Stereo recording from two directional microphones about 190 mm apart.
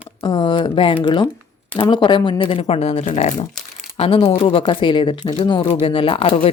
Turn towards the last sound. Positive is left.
turn(degrees=30)  # may be behind; listen again after turning